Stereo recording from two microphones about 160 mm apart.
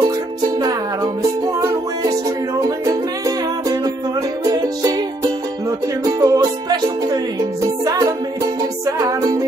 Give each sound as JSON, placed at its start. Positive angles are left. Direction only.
{"t": 2.8, "sound": "music", "side_deg": -20}
{"t": 6.0, "sound": "music", "side_deg": -20}